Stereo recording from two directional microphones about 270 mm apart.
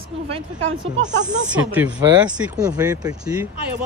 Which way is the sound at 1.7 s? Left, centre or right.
Centre.